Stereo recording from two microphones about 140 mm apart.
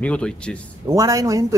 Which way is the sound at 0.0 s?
5° left (ahead or behind).